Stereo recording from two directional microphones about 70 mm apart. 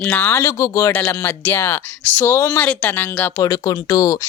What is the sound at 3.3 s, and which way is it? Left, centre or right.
Speech, left.